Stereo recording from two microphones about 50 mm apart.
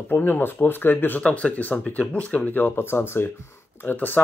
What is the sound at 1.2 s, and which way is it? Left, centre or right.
Speech, left.